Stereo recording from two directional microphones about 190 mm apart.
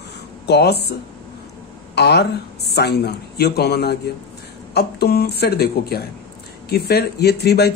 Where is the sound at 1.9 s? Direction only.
60° left (ahead or behind).